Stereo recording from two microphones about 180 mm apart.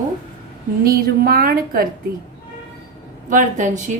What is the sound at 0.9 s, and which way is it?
A woman's voice, 55° right (ahead or behind).